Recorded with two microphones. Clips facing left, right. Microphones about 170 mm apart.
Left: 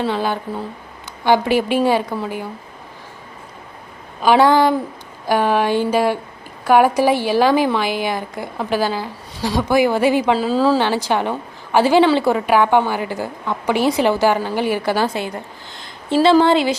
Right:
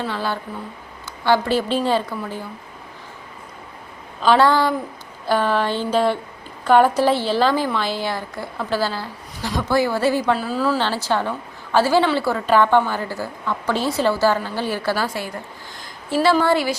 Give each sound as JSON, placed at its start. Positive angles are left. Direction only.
{"t": 0.0, "sound": "a woman's voice", "side_deg": 20}
{"t": 4.2, "sound": "a woman's voice", "side_deg": 15}
{"t": 10.5, "sound": "speech", "side_deg": 30}
{"t": 10.8, "sound": "a woman's voice", "side_deg": 15}